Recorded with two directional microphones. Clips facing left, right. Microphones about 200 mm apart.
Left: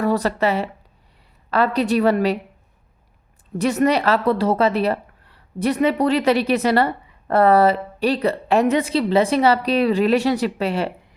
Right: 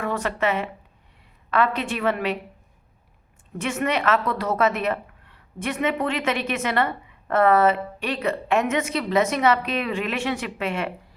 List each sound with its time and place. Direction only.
0.0 s speech: 35° left (ahead or behind)
3.6 s speech: 35° left (ahead or behind)